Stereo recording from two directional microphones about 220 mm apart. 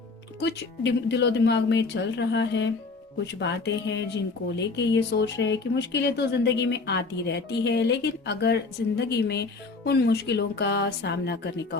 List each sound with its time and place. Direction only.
0.3 s speech: 50° left (ahead or behind)